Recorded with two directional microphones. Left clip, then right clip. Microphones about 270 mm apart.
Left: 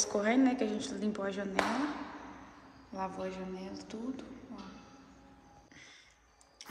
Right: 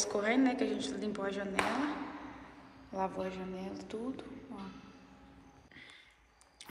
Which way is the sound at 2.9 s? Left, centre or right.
Centre.